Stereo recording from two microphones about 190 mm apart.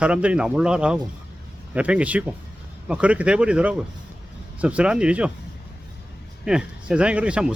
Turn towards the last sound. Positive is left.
turn(degrees=-5)  # may be behind; listen again after turning